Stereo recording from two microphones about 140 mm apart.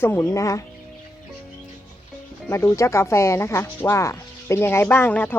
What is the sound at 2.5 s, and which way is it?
Speech, 20° left (ahead or behind).